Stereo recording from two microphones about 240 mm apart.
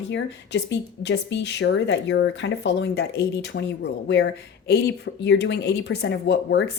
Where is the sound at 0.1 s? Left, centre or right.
Left.